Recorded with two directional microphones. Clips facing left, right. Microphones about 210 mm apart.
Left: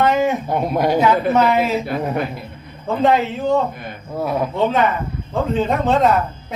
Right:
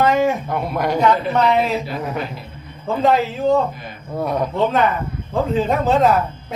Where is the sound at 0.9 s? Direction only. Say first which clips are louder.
Left 1 dB; 5° left (ahead or behind).